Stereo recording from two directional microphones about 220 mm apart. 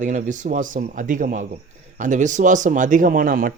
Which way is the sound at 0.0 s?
35° right (ahead or behind).